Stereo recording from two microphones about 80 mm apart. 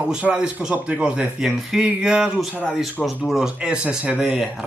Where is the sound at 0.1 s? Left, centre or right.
Centre.